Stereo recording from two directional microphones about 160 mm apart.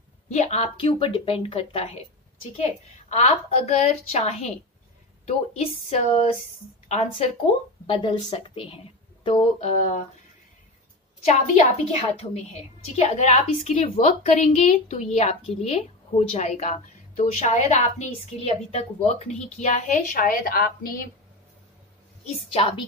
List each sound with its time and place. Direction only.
0.3 s a woman's voice: 45° left (ahead or behind)
3.1 s a woman's voice: 45° left (ahead or behind)
7.8 s a woman's voice: 30° left (ahead or behind); by 10.0 s 45° left (ahead or behind)
11.2 s a woman's voice: 40° left (ahead or behind); by 21.0 s 65° left (ahead or behind)
22.5 s a woman's voice: 35° left (ahead or behind)